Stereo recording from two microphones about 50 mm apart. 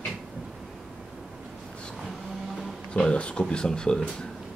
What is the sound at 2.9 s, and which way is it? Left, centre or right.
Speech, centre.